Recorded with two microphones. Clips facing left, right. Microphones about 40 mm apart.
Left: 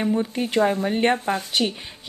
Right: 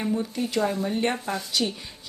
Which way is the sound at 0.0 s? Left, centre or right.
Left.